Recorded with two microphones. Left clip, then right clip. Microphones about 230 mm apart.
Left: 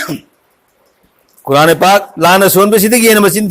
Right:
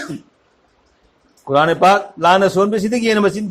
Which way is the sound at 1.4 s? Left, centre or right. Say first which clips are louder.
Left 5 dB; left.